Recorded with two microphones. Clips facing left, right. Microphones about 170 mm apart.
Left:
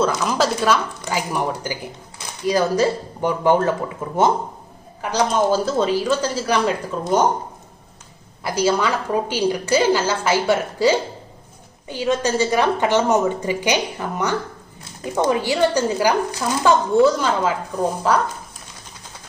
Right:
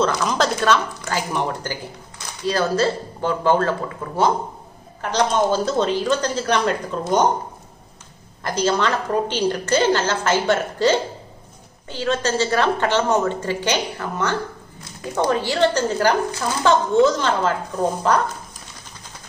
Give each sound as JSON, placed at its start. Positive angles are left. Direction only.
{"t": 0.0, "sound": "a woman's voice", "side_deg": 5}
{"t": 5.0, "sound": "a woman's voice", "side_deg": 5}
{"t": 8.5, "sound": "a woman's voice", "side_deg": 10}